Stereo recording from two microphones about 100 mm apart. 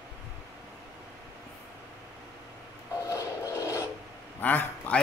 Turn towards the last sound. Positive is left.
turn(degrees=15)  # may be behind; listen again after turning